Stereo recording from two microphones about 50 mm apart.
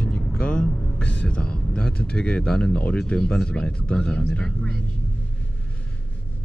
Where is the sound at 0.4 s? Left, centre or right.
Left.